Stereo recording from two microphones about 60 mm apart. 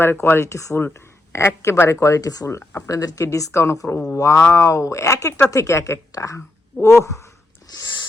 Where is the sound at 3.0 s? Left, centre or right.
Left.